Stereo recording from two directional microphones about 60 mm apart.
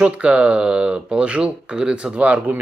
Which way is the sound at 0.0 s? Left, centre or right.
Right.